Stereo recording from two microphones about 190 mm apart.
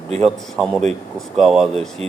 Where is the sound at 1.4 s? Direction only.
Centre (ahead or behind).